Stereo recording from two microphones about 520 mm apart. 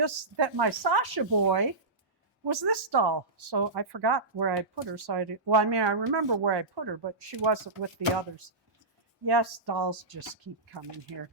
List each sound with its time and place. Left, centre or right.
0.0 s speech: right
9.2 s speech: right